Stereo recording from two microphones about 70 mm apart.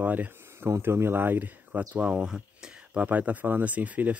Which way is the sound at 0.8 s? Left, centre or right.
Right.